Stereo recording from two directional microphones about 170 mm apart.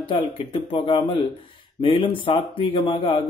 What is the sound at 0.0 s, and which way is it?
Speech, 30° left (ahead or behind).